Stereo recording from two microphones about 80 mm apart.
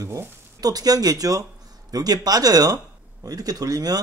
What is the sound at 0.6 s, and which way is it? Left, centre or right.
Speech, right.